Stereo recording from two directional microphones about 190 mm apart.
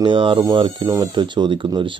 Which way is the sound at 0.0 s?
25° right (ahead or behind).